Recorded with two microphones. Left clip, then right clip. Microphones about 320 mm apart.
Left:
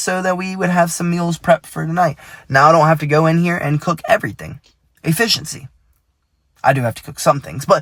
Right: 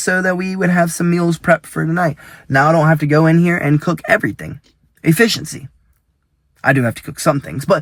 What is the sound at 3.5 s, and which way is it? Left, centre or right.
Speech, left.